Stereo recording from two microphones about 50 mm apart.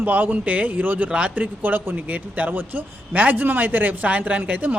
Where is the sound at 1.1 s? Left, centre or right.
Right.